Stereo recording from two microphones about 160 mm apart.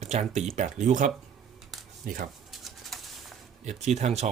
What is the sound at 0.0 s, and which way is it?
Speech, 45° right (ahead or behind).